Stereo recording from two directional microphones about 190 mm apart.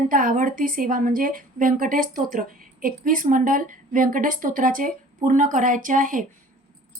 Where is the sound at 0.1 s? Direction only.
45° right (ahead or behind).